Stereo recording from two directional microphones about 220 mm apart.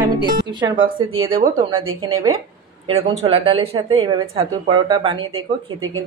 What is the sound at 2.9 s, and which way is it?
A woman's voice, 30° right (ahead or behind).